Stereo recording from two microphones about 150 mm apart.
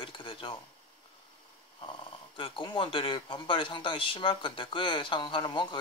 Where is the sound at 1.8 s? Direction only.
35° left (ahead or behind).